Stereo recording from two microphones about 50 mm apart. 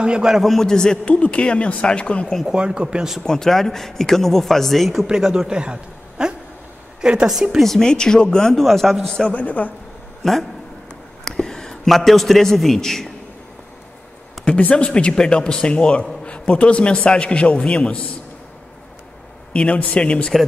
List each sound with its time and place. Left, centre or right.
0.0 s speech: centre
0.3 s a man's voice: centre
0.6 s a man's voice: centre
2.4 s speech: centre
3.3 s a man's voice: centre
5.5 s a man's voice: centre
7.5 s a man's voice: centre
9.3 s a man's voice: left
10.2 s a man's voice: centre
14.6 s a man's voice: left
19.5 s a man's voice: left